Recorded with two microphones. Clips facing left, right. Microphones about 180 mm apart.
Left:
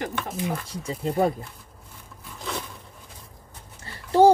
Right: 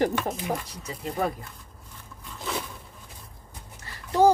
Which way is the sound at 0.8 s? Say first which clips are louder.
Left 7 dB; 30° left (ahead or behind).